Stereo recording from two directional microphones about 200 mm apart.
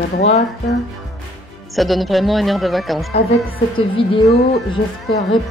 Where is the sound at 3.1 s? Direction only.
30° left (ahead or behind).